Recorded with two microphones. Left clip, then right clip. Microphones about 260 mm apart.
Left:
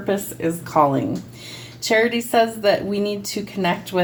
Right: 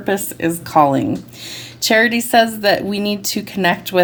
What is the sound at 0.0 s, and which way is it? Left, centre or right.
A woman's voice, right.